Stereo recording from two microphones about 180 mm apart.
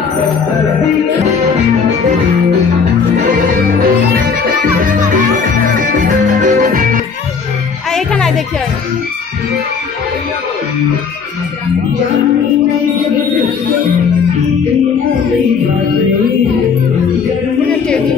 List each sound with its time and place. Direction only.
3.3 s music: 55° right (ahead or behind)
7.9 s music: 5° left (ahead or behind)